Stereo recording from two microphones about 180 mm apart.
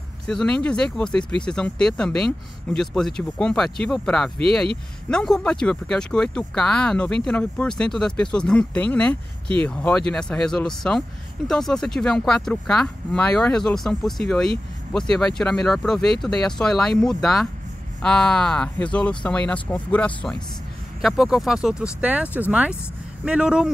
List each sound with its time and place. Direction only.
0.3 s speech: 5° left (ahead or behind)